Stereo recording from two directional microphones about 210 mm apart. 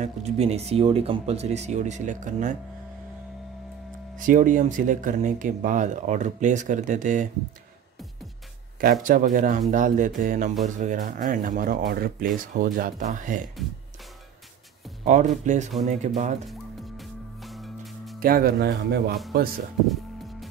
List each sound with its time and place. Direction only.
0.0 s speech: 30° right (ahead or behind)
4.2 s speech: 40° right (ahead or behind)
8.8 s speech: 40° right (ahead or behind)
15.0 s speech: 35° right (ahead or behind)
16.4 s music: centre (ahead or behind)
18.2 s speech: 45° right (ahead or behind)